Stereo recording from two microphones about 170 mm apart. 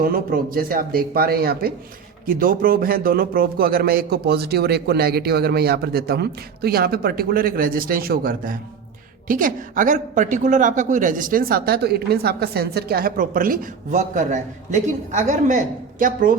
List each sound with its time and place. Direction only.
0.0 s a man's voice: 60° right (ahead or behind)